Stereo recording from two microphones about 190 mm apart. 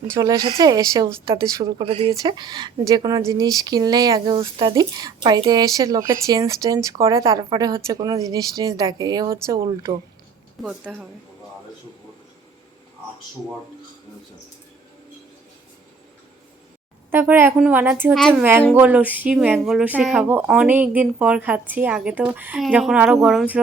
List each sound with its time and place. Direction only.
0.1 s speech: 20° right (ahead or behind)
10.6 s a woman's voice: 5° right (ahead or behind)
17.1 s speech: 10° right (ahead or behind)
18.1 s a woman's voice: centre (ahead or behind)